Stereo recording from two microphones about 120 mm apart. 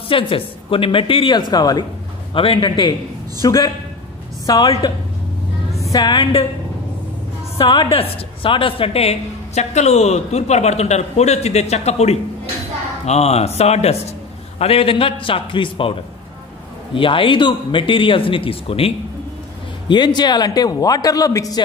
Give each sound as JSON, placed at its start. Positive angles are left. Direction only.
{"t": 0.1, "sound": "speech", "side_deg": 50}
{"t": 1.5, "sound": "a man's voice", "side_deg": 35}
{"t": 2.3, "sound": "speech", "side_deg": 50}
{"t": 3.4, "sound": "a man's voice", "side_deg": 30}
{"t": 7.5, "sound": "a woman's voice", "side_deg": 45}
{"t": 19.9, "sound": "a man's voice", "side_deg": 40}